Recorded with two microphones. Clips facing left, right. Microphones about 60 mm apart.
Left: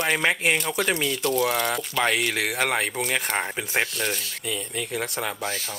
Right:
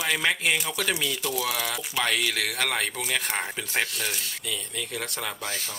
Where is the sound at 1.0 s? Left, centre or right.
Centre.